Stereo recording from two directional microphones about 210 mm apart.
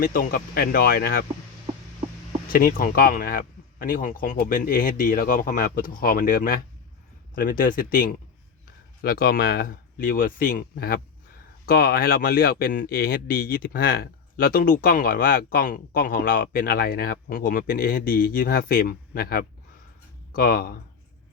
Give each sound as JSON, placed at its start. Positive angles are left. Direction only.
{"t": 0.0, "sound": "speech", "side_deg": 45}
{"t": 2.5, "sound": "speech", "side_deg": 45}